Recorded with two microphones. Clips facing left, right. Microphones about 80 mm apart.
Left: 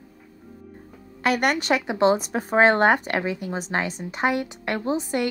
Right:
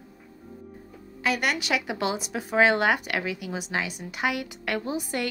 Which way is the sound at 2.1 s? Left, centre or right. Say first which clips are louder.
Left 3 dB; left.